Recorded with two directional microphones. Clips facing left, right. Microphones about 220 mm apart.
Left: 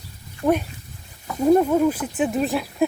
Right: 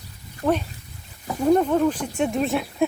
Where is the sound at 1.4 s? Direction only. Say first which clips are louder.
Left 2 dB; 5° left (ahead or behind).